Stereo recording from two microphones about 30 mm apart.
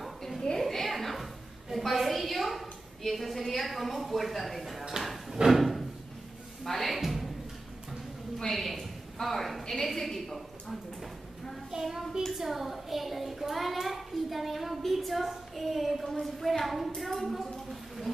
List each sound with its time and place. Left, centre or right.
0.6 s a sound: centre
1.9 s a child's voice: centre
5.5 s drawer open or close: centre
6.6 s speech: centre
7.0 s music: centre
8.4 s a woman's voice: centre
11.8 s a child's voice: centre
17.4 s a sound: centre